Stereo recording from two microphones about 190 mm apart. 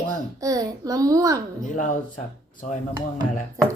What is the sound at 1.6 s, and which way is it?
Speech, 40° left (ahead or behind).